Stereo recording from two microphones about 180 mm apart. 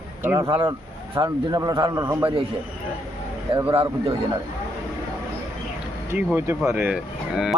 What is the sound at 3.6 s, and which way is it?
Speech, 25° right (ahead or behind).